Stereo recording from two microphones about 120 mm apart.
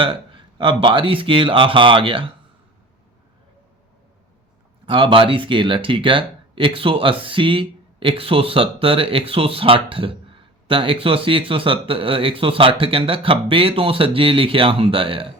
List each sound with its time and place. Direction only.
0.0 s speech: 45° right (ahead or behind)
4.9 s speech: 45° right (ahead or behind)